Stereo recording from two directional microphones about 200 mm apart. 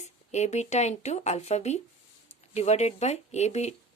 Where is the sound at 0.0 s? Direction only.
35° left (ahead or behind).